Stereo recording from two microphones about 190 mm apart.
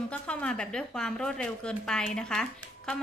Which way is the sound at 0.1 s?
5° left (ahead or behind).